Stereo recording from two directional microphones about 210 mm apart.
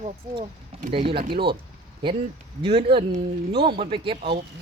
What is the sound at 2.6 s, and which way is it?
Speech, 25° right (ahead or behind).